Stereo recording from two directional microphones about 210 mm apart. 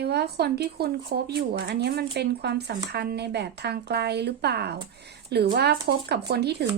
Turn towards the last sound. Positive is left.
turn(degrees=-50)  # may be behind; listen again after turning